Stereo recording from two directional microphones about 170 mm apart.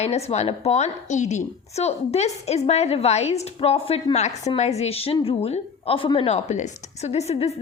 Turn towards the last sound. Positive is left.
turn(degrees=40)  # may be behind; listen again after turning